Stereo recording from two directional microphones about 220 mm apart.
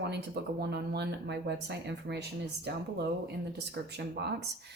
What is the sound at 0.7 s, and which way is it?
Speech, 50° right (ahead or behind).